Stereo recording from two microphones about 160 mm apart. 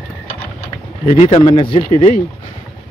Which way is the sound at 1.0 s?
35° left (ahead or behind).